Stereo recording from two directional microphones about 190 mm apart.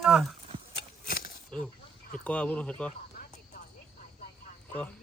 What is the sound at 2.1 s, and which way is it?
Speech, 5° left (ahead or behind).